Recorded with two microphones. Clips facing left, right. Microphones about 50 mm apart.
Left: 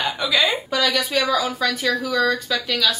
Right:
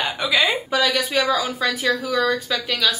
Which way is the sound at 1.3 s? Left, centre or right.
Centre.